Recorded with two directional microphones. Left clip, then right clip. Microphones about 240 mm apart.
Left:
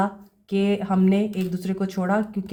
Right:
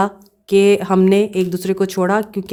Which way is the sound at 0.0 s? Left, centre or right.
Right.